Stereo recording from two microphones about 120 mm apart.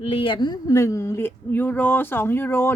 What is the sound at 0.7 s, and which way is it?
A woman's voice, 25° left (ahead or behind).